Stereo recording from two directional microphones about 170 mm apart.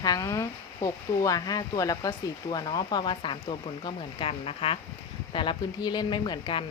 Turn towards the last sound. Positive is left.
turn(degrees=25)  # may be behind; listen again after turning